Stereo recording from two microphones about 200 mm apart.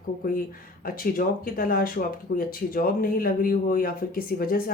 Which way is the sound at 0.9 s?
45° left (ahead or behind).